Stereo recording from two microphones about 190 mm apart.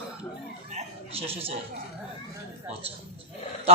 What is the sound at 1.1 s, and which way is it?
Speech, 30° right (ahead or behind).